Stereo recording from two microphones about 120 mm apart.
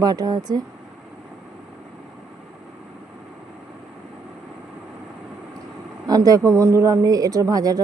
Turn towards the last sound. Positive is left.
turn(degrees=-30)  # may be behind; listen again after turning